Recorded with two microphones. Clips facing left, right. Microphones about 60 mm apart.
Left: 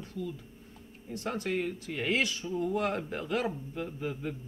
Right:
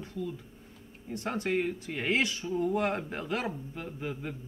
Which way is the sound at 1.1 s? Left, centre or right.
Right.